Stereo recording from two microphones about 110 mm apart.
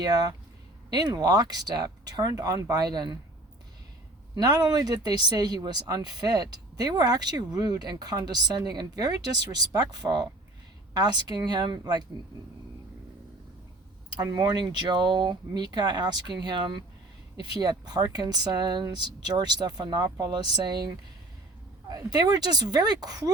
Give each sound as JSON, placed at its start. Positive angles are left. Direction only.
{"t": 0.0, "sound": "speech", "side_deg": -35}
{"t": 4.4, "sound": "speech", "side_deg": -35}
{"t": 14.2, "sound": "speech", "side_deg": -35}